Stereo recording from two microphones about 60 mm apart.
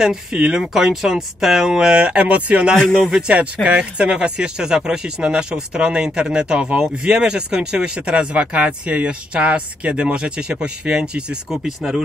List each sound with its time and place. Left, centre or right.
0.0 s speech: centre
2.7 s speech: centre
3.3 s speech: centre